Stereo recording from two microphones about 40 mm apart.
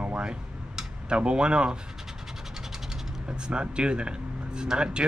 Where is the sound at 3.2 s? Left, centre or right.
Right.